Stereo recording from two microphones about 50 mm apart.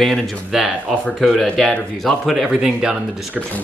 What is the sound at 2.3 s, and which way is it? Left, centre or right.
Speech, centre.